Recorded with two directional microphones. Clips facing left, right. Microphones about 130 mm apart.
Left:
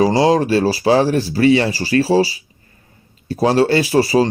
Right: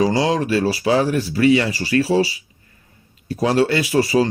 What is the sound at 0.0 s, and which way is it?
Speech, 35° left (ahead or behind).